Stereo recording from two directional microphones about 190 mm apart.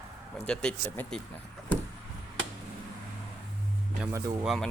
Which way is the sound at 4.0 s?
15° right (ahead or behind).